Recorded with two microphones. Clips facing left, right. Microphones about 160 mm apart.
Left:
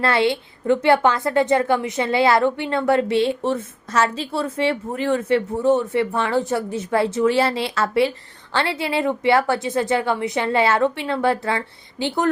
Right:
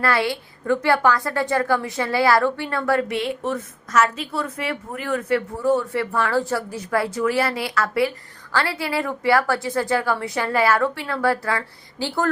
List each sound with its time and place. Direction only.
0.0 s a woman's voice: 25° left (ahead or behind)